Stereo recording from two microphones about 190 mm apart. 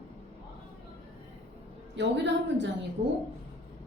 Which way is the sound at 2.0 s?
65° right (ahead or behind).